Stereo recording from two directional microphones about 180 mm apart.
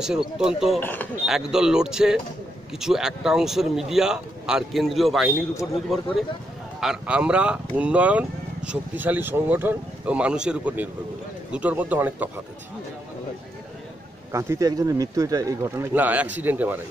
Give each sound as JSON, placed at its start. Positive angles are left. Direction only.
{"t": 0.0, "sound": "speech", "side_deg": -5}
{"t": 0.7, "sound": "speech", "side_deg": 10}
{"t": 1.2, "sound": "speech", "side_deg": 0}
{"t": 6.8, "sound": "speech", "side_deg": -5}
{"t": 14.3, "sound": "speech", "side_deg": -15}